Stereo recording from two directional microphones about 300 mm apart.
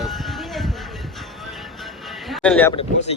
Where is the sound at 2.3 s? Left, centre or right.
Centre.